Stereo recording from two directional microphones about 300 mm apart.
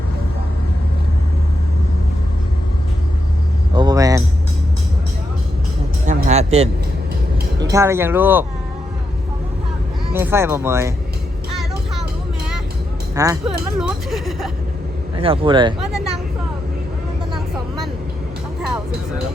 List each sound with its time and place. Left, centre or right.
3.8 s music: centre
6.1 s music: right
7.6 s speech: centre
10.2 s speech: centre
13.1 s music: centre
15.2 s speech: centre